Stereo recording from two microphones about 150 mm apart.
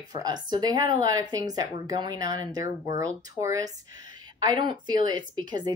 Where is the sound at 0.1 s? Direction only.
25° right (ahead or behind).